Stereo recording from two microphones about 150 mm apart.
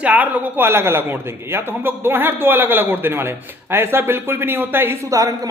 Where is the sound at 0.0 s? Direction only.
10° right (ahead or behind).